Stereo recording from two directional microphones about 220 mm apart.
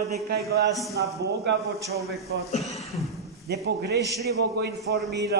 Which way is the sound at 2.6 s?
Centre (ahead or behind).